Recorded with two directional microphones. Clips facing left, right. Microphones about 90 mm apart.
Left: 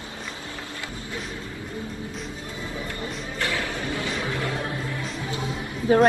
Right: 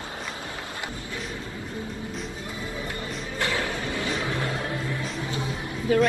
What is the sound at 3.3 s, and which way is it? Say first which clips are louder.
Music: right 1 dB; 20° right (ahead or behind).